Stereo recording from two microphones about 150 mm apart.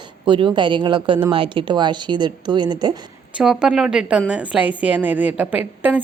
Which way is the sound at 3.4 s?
5° right (ahead or behind).